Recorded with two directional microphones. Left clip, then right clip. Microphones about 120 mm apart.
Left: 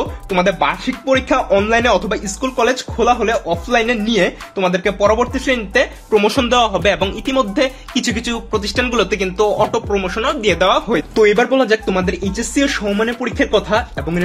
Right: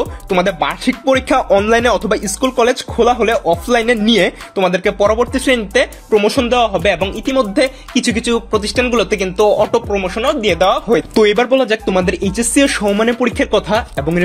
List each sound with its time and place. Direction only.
0.0 s speech: 50° right (ahead or behind)
6.1 s speech: 15° right (ahead or behind)
7.3 s speech: 25° right (ahead or behind)
9.2 s speech: 40° right (ahead or behind); by 11.1 s 25° right (ahead or behind)
11.1 s speech: 60° right (ahead or behind)
12.8 s speech: 45° right (ahead or behind)
13.2 s speech: 60° right (ahead or behind); by 14.0 s 45° right (ahead or behind)